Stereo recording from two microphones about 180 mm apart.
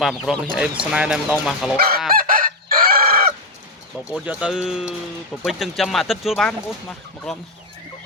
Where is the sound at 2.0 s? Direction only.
55° right (ahead or behind).